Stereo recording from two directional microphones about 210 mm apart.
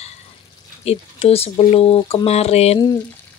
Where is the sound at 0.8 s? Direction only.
30° left (ahead or behind).